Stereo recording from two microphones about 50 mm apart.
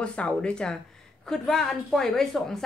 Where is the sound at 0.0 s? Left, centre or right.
Left.